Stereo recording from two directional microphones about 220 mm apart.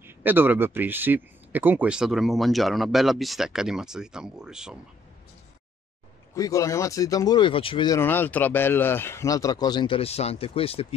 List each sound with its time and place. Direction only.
0.0 s speech: 10° right (ahead or behind)
6.3 s speech: 15° left (ahead or behind)